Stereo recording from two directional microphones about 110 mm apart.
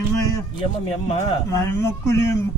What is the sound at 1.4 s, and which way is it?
Speech, 25° left (ahead or behind).